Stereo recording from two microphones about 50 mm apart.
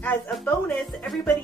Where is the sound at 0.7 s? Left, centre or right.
Centre.